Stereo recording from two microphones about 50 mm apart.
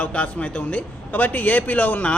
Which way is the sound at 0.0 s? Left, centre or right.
Left.